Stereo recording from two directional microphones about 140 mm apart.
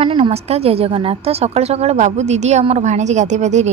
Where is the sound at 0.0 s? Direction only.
40° right (ahead or behind).